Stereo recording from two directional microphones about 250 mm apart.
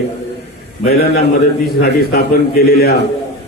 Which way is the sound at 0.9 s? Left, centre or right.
Left.